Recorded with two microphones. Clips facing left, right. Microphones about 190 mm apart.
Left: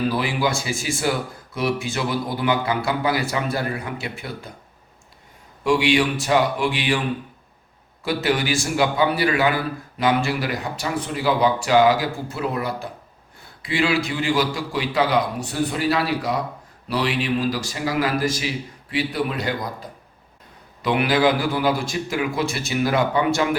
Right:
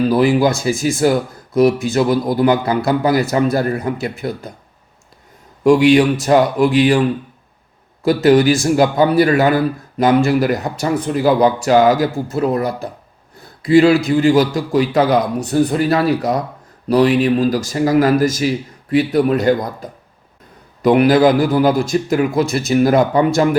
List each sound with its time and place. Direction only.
0.1 s a man's voice: 45° right (ahead or behind)
5.6 s a man's voice: 45° right (ahead or behind)
8.0 s a man's voice: 40° right (ahead or behind)
20.8 s a man's voice: 45° right (ahead or behind)